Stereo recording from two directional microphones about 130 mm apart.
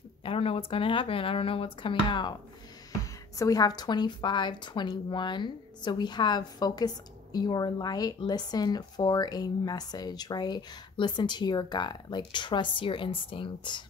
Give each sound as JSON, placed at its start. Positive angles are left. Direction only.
{"t": 0.2, "sound": "speech", "side_deg": 45}
{"t": 3.0, "sound": "speech", "side_deg": 25}